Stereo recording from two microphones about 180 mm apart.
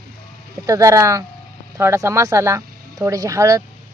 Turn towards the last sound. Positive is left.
turn(degrees=-20)  # may be behind; listen again after turning